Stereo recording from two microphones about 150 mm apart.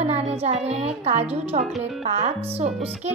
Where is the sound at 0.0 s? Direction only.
45° right (ahead or behind).